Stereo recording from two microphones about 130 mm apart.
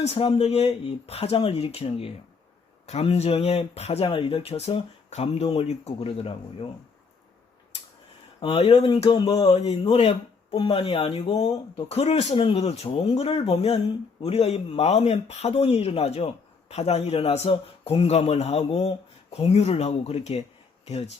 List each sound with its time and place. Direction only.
0.0 s speech: 50° left (ahead or behind)
8.4 s speech: 40° left (ahead or behind)
11.9 s speech: 55° left (ahead or behind)